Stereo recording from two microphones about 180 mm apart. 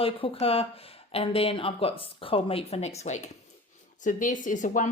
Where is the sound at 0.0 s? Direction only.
30° left (ahead or behind).